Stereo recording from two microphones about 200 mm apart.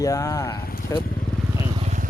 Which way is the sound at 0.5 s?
50° left (ahead or behind).